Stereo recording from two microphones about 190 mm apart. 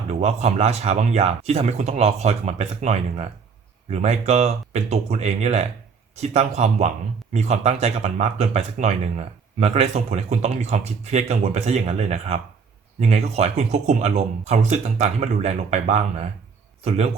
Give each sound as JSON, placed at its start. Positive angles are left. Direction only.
{"t": 0.1, "sound": "speech", "side_deg": -35}